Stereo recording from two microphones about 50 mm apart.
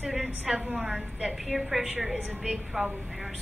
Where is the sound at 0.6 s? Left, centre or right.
Right.